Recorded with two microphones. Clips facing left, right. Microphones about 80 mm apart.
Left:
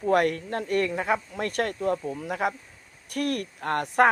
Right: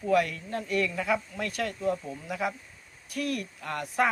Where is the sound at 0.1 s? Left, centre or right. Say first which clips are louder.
Left 3 dB; left.